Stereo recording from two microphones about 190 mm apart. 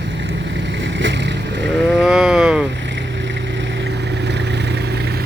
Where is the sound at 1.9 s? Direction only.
5° right (ahead or behind).